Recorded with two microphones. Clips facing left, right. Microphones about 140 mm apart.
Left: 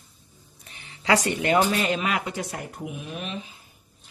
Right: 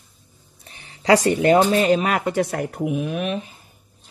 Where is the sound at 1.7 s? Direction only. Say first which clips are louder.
Right 7 dB; 40° right (ahead or behind); by 3.5 s 60° right (ahead or behind).